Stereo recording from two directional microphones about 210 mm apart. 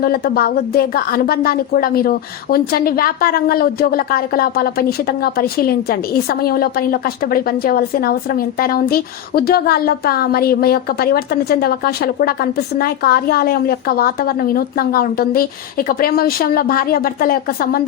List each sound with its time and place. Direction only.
0.0 s a woman's voice: 45° left (ahead or behind)